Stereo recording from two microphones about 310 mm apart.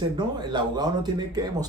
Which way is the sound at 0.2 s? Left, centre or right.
Centre.